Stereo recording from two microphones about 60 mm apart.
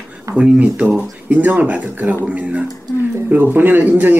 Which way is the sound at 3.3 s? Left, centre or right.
Right.